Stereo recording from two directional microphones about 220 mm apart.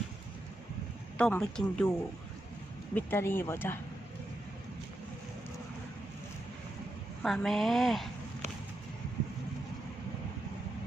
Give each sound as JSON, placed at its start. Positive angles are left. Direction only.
{"t": 1.1, "sound": "speech", "side_deg": 5}
{"t": 2.9, "sound": "speech", "side_deg": 10}
{"t": 7.2, "sound": "speech", "side_deg": 0}